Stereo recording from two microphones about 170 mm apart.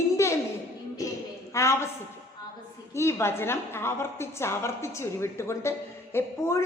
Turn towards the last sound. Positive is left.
turn(degrees=15)  # may be behind; listen again after turning